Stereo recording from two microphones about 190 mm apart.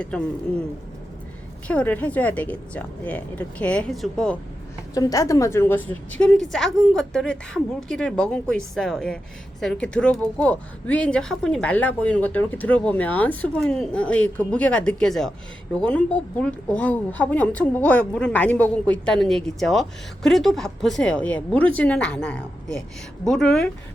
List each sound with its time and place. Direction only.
1.6 s speech: 5° left (ahead or behind)
4.9 s a woman's voice: 20° left (ahead or behind)